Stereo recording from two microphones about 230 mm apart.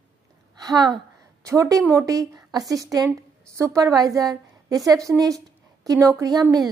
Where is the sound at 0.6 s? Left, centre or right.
Centre.